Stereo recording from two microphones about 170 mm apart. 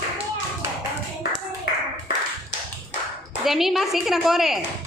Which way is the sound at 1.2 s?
65° left (ahead or behind).